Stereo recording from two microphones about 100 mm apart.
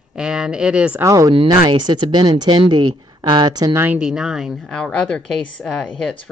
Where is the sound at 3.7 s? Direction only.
20° right (ahead or behind).